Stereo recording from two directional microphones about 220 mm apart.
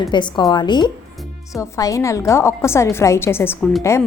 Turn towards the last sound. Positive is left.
turn(degrees=10)  # may be behind; listen again after turning